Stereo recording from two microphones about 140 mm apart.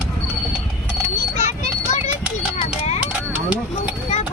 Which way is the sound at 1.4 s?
55° left (ahead or behind).